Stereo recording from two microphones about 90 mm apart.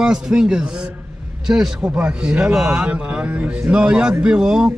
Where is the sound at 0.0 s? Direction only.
5° right (ahead or behind).